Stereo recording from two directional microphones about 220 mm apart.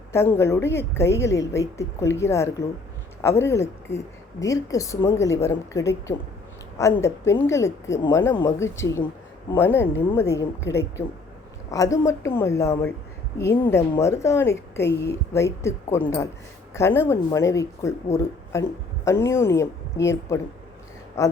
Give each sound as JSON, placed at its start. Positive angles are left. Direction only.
{"t": 0.1, "sound": "a woman's voice", "side_deg": 10}
{"t": 11.7, "sound": "a woman's voice", "side_deg": 15}
{"t": 14.8, "sound": "a woman's voice", "side_deg": 50}
{"t": 15.1, "sound": "a woman's voice", "side_deg": 10}
{"t": 21.2, "sound": "speech", "side_deg": 15}